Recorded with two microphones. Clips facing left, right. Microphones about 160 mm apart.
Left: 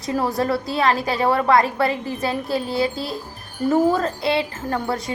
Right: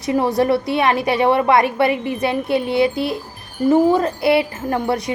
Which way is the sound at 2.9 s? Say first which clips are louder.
Right 6 dB; 60° right (ahead or behind).